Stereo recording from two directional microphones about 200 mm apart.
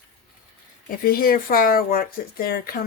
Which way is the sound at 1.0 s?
45° left (ahead or behind).